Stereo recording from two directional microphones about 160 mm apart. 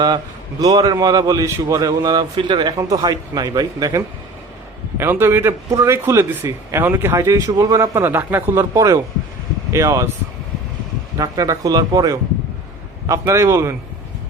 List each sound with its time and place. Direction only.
0.6 s speech: 25° right (ahead or behind)
11.2 s speech: 20° right (ahead or behind)